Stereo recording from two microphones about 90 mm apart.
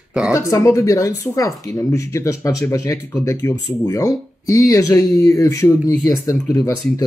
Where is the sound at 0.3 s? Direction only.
35° left (ahead or behind).